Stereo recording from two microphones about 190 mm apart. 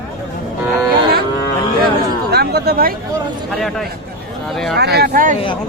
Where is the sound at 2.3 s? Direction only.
60° right (ahead or behind).